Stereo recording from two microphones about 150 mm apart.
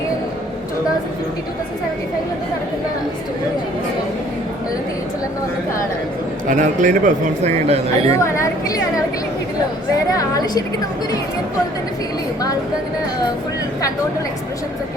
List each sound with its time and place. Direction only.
6.5 s speech: 55° right (ahead or behind)
8.2 s a woman's voice: 20° left (ahead or behind)
10.1 s a woman's voice: 25° left (ahead or behind)